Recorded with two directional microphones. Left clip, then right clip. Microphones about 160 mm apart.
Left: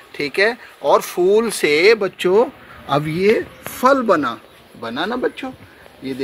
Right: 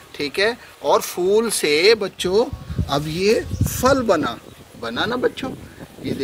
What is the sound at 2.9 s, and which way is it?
Speech, 45° left (ahead or behind).